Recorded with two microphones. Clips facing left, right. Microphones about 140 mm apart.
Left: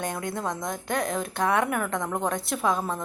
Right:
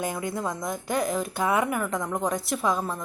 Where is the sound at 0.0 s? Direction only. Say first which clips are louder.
Right 1 dB; 5° right (ahead or behind).